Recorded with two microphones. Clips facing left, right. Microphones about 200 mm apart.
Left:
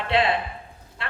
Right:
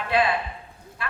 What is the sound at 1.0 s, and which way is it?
Vehicle, 25° left (ahead or behind).